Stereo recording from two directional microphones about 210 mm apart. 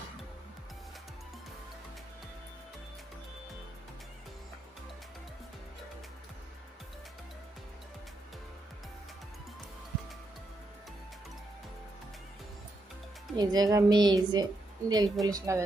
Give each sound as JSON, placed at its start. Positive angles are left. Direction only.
{"t": 13.3, "sound": "a woman's voice", "side_deg": -20}